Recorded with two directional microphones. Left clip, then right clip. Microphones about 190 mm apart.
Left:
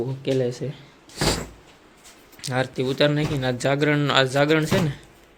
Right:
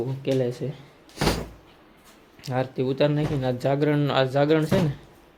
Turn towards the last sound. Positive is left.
turn(degrees=0)  # may be behind; listen again after turning